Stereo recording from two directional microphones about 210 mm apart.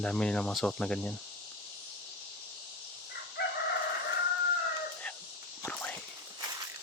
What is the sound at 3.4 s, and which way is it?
Chicken, 50° left (ahead or behind).